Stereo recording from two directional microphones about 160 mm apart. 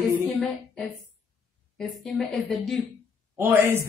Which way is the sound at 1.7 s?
5° left (ahead or behind).